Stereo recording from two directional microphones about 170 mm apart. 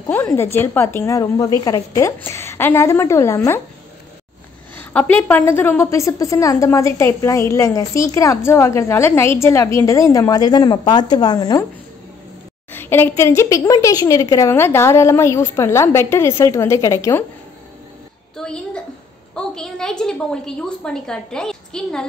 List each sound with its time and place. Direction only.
0.1 s a woman's voice: 10° left (ahead or behind)
4.7 s a woman's voice: 10° left (ahead or behind)
12.7 s a woman's voice: 15° left (ahead or behind)
18.3 s a sound: 5° left (ahead or behind)
19.3 s a woman's voice: 5° left (ahead or behind)